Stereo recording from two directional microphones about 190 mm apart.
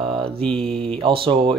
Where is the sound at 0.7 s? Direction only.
30° right (ahead or behind).